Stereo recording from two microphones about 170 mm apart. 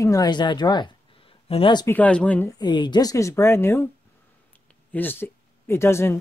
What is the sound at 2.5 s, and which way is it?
Speech, 25° left (ahead or behind).